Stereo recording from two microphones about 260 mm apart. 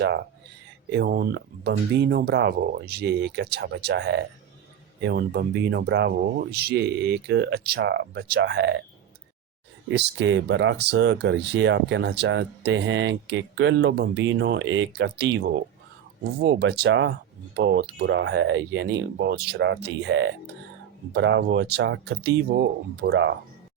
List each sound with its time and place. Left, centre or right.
0.9 s speech: right
9.9 s speech: right
16.4 s speech: right